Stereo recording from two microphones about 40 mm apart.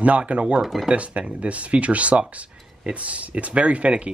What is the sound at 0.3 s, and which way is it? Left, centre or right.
Speech, right.